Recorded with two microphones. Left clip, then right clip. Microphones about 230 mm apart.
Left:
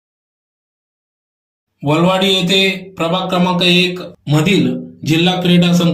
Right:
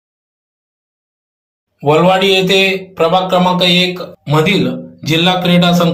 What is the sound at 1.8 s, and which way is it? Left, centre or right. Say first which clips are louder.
A man's voice: right 4 dB; centre.